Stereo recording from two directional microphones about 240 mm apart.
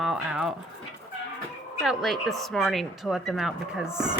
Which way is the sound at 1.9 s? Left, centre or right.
Centre.